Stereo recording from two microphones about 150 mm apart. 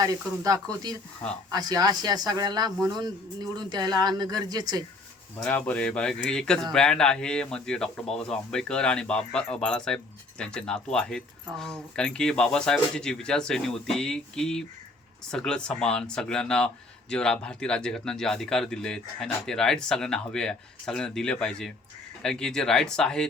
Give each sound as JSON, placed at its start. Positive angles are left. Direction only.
{"t": 0.0, "sound": "speech", "side_deg": -25}
{"t": 5.4, "sound": "speech", "side_deg": 10}